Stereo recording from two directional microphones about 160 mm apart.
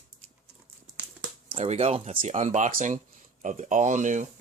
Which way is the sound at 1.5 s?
45° right (ahead or behind).